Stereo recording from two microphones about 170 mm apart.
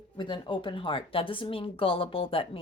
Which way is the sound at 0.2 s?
30° left (ahead or behind).